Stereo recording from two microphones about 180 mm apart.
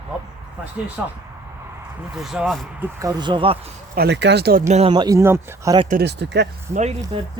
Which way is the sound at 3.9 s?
65° right (ahead or behind).